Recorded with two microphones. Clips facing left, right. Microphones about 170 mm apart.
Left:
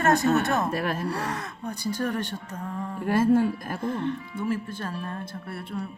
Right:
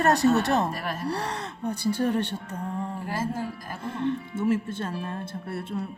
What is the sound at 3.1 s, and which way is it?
Speech, 60° left (ahead or behind).